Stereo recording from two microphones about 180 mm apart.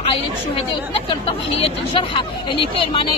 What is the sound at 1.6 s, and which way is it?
Speech, 30° left (ahead or behind).